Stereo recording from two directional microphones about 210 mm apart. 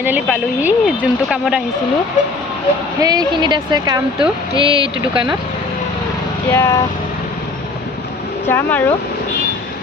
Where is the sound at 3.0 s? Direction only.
20° right (ahead or behind).